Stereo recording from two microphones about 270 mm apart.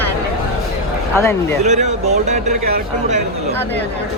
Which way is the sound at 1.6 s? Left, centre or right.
Right.